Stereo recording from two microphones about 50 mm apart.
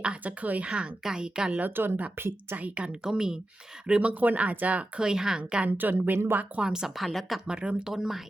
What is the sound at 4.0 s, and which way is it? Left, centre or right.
Speech, right.